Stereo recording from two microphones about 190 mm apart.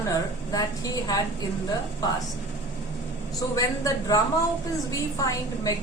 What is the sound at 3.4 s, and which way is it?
Speech, 20° left (ahead or behind).